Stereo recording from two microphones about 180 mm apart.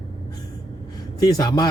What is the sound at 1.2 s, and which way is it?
Speech, 20° left (ahead or behind).